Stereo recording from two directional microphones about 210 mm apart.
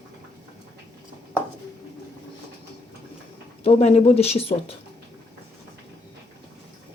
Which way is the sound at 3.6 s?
30° left (ahead or behind).